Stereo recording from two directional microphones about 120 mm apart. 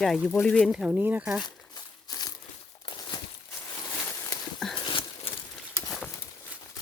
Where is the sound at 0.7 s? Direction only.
10° right (ahead or behind).